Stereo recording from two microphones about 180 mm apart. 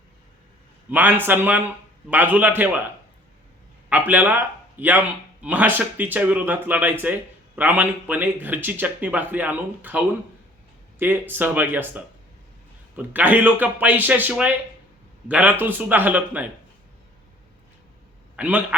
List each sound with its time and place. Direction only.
0.9 s speech: 10° right (ahead or behind)
3.8 s speech: 10° right (ahead or behind)
11.0 s speech: 10° right (ahead or behind)
18.3 s a man's voice: 10° right (ahead or behind)